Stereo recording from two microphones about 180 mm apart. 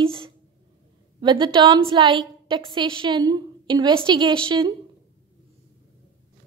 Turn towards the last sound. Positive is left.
turn(degrees=-30)  # may be behind; listen again after turning